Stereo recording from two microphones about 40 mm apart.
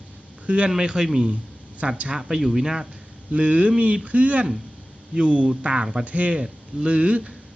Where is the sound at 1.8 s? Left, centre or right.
Right.